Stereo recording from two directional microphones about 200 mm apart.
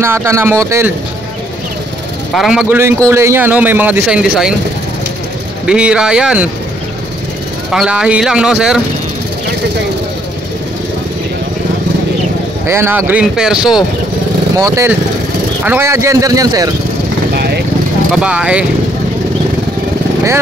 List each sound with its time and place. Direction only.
0.0 s speech: 15° right (ahead or behind)
2.3 s speech: 5° right (ahead or behind)
5.7 s speech: 5° right (ahead or behind)
7.7 s speech: 5° right (ahead or behind)
12.6 s speech: 10° right (ahead or behind)
14.6 s speech: 15° right (ahead or behind)
17.3 s vehicle: 50° right (ahead or behind)
18.1 s speech: 5° right (ahead or behind)